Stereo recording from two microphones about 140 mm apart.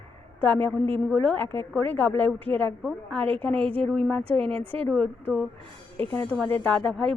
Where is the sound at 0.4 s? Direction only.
10° left (ahead or behind).